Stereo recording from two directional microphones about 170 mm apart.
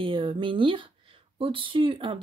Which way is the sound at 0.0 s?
30° right (ahead or behind).